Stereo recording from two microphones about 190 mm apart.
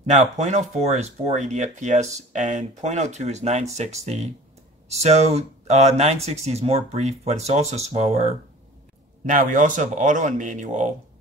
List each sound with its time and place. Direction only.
0.0 s speech: 35° right (ahead or behind)